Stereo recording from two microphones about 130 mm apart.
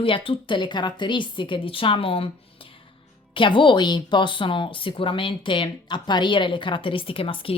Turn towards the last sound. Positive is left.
turn(degrees=45)  # may be behind; listen again after turning